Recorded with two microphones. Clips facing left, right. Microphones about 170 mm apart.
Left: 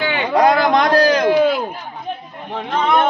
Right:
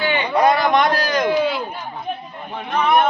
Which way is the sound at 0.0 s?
90° left.